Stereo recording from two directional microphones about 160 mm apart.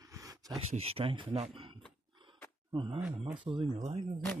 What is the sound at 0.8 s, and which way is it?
Speech, 35° right (ahead or behind).